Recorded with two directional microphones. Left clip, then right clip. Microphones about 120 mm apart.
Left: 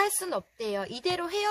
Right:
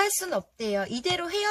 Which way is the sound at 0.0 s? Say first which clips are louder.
Right 2 dB; 50° left (ahead or behind).